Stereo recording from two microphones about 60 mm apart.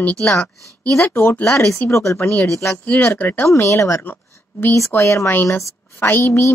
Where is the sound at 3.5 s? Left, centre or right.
Left.